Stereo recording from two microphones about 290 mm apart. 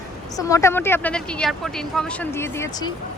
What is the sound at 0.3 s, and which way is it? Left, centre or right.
Speech, centre.